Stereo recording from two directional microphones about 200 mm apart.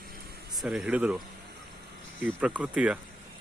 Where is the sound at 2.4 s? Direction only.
5° right (ahead or behind).